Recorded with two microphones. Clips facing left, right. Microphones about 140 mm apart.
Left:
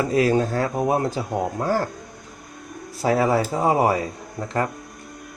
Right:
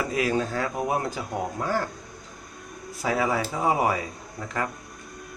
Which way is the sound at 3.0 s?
35° left (ahead or behind).